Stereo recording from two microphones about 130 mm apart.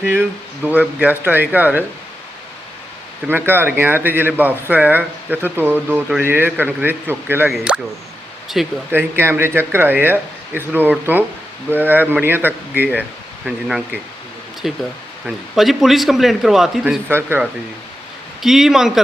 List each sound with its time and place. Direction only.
0.0 s speech: 15° right (ahead or behind)
3.2 s a man's voice: 15° right (ahead or behind)
8.9 s a man's voice: 15° right (ahead or behind)
17.1 s speech: 20° right (ahead or behind)
18.4 s a man's voice: 5° right (ahead or behind)